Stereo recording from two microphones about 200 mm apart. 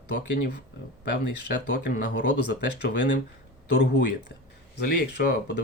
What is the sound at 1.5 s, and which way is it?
Speech, 40° left (ahead or behind).